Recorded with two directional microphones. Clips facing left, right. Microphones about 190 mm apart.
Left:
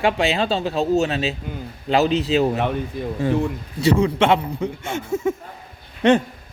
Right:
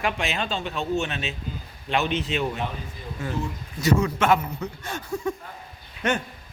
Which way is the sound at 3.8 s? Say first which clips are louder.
Left 5 dB; 30° left (ahead or behind).